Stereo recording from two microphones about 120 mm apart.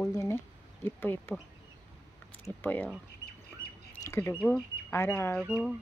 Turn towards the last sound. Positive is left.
turn(degrees=0)  # may be behind; listen again after turning